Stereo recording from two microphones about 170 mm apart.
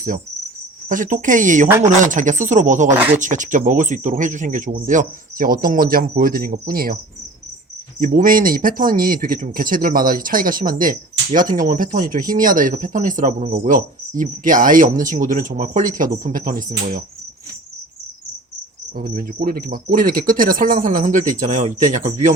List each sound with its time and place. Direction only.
0.9 s speech: 50° right (ahead or behind)
18.9 s speech: 60° right (ahead or behind)